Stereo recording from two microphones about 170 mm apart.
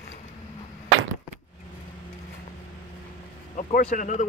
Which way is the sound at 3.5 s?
45° left (ahead or behind).